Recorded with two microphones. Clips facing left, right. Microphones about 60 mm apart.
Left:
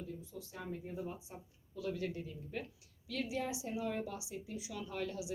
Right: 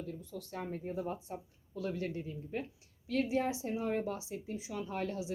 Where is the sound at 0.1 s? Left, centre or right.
Right.